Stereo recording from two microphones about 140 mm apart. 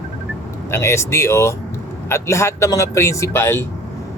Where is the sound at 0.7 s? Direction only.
20° left (ahead or behind).